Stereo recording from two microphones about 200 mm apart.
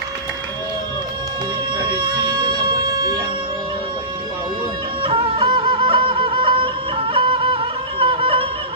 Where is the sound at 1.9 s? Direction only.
20° right (ahead or behind).